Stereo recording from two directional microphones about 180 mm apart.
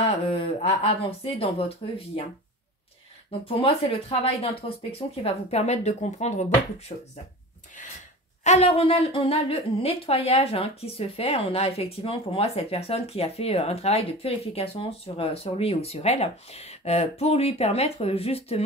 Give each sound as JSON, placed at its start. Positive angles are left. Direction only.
{"t": 0.0, "sound": "a woman's voice", "side_deg": 30}
{"t": 3.3, "sound": "a woman's voice", "side_deg": 30}
{"t": 8.5, "sound": "a woman's voice", "side_deg": 35}